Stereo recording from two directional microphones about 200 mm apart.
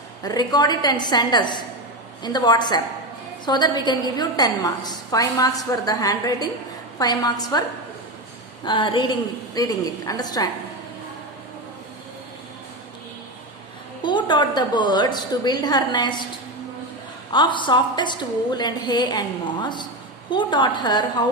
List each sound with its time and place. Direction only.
0.2 s a woman's voice: 20° left (ahead or behind)
8.6 s a woman's voice: 25° left (ahead or behind)
14.0 s a woman's voice: 20° left (ahead or behind)
17.3 s a woman's voice: 25° left (ahead or behind)